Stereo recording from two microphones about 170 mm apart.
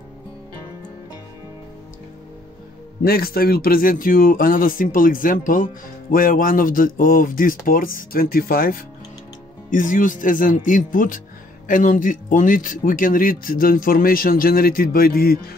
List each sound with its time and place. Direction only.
3.0 s speech: 60° left (ahead or behind)